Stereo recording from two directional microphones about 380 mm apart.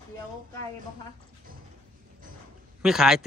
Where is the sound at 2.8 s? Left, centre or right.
Centre.